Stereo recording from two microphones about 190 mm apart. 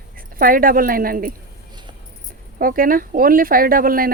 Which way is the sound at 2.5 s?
50° right (ahead or behind).